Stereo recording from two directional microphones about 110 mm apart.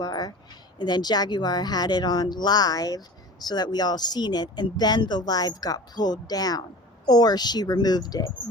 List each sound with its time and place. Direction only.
0.0 s speech: 40° left (ahead or behind)